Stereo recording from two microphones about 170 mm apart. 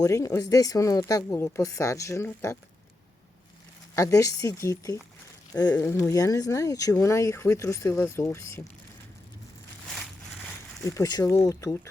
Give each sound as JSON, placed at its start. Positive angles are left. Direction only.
{"t": 0.0, "sound": "speech", "side_deg": 20}
{"t": 3.9, "sound": "speech", "side_deg": 20}
{"t": 10.8, "sound": "speech", "side_deg": 15}